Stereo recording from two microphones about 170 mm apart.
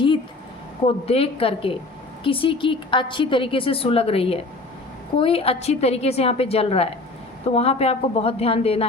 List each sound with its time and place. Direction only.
0.9 s a woman's voice: 35° left (ahead or behind)